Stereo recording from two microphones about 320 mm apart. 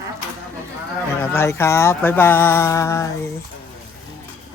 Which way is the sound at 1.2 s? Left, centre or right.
Centre.